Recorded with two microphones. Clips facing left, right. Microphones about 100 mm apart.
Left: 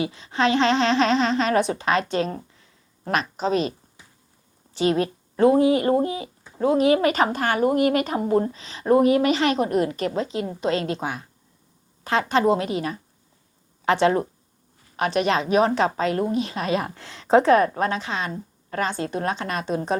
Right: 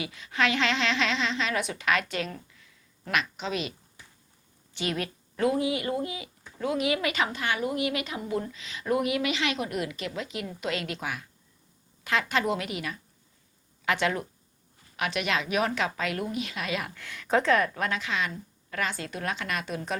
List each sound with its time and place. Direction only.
0.0 s a woman's voice: 30° left (ahead or behind)